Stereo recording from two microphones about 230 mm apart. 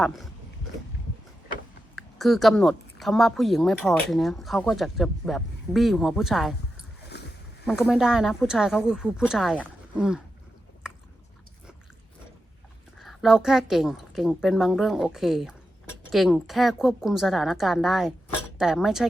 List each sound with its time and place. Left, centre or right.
0.0 s speech: centre
2.0 s speech: centre
7.1 s wild animals: left
7.6 s speech: centre
13.0 s speech: centre